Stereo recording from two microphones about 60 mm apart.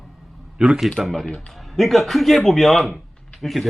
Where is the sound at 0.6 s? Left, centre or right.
Centre.